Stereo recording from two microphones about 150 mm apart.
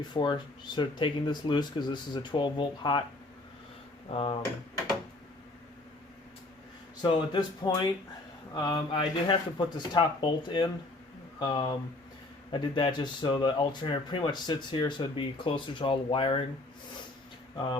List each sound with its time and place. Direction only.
0.0 s speech: 30° left (ahead or behind)
4.1 s speech: 40° left (ahead or behind)
7.0 s speech: 30° left (ahead or behind)